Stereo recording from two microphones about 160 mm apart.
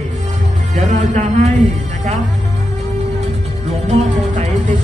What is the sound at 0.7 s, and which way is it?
Music, 45° right (ahead or behind).